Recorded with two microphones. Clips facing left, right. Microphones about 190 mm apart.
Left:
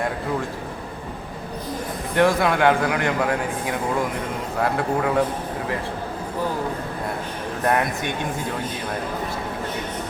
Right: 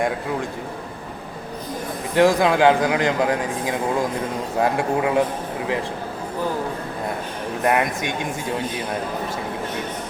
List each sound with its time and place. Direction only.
2.1 s speech: 15° right (ahead or behind)
7.6 s speech: 15° right (ahead or behind)